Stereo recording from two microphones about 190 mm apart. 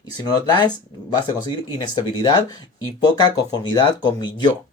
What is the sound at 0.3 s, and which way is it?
Speech, 20° left (ahead or behind).